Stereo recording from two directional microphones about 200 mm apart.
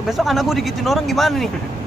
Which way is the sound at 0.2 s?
Centre (ahead or behind).